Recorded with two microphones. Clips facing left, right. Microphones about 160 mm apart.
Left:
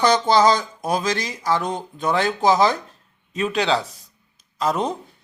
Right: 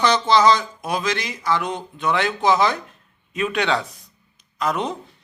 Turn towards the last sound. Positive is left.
turn(degrees=35)  # may be behind; listen again after turning